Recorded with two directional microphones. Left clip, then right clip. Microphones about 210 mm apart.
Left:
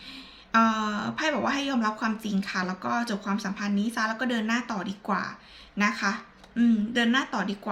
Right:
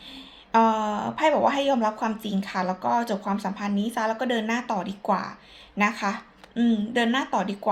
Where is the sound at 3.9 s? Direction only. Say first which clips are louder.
Right 4 dB; 5° left (ahead or behind).